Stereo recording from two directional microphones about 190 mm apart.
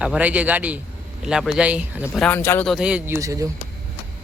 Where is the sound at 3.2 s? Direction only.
15° right (ahead or behind).